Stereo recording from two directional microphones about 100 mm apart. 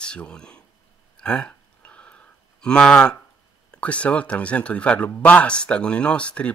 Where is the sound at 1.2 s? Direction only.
10° left (ahead or behind).